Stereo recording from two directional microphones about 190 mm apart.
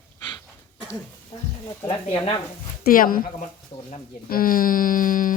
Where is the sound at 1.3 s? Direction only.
25° left (ahead or behind).